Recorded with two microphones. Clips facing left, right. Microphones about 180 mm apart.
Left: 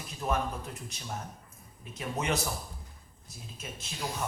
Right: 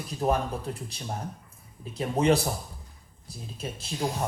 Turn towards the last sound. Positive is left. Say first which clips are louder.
# right 8 dB
turn(degrees=-35)  # may be behind; listen again after turning